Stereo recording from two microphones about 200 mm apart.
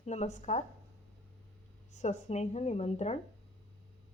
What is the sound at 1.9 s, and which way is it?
A woman's voice, 35° left (ahead or behind).